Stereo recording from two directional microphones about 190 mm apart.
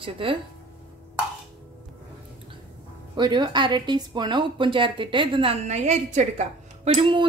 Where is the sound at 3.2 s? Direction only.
25° right (ahead or behind).